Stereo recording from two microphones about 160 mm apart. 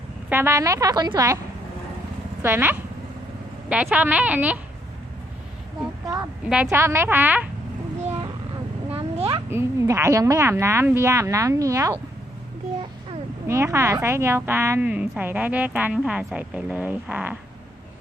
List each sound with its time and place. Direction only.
0.3 s a woman's voice: 15° right (ahead or behind)
2.4 s a woman's voice: 15° right (ahead or behind)
6.5 s a woman's voice: 10° right (ahead or behind)
8.9 s a sound: 35° right (ahead or behind)
9.5 s a woman's voice: 15° right (ahead or behind)
13.5 s a woman's voice: 15° right (ahead or behind)